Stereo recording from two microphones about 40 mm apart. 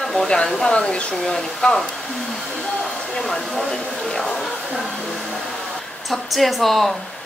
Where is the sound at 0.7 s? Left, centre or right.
Left.